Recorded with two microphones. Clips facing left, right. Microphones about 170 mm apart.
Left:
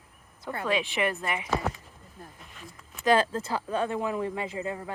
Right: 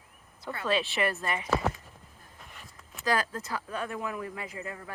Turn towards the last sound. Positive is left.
turn(degrees=25)  # may be behind; listen again after turning